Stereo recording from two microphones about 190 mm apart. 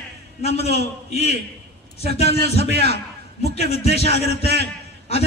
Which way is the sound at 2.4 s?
60° right (ahead or behind).